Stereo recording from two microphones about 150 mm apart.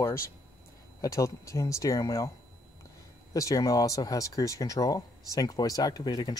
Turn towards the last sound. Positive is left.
turn(degrees=25)  # may be behind; listen again after turning